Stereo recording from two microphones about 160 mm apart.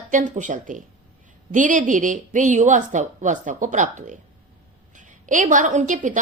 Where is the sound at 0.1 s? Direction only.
50° right (ahead or behind).